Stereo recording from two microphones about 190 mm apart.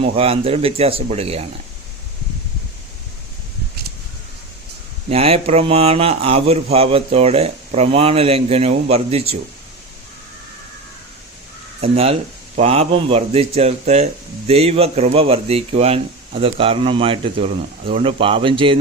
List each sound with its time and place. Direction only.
0.0 s speech: 30° right (ahead or behind)
5.0 s speech: 30° right (ahead or behind)
11.8 s speech: 30° right (ahead or behind)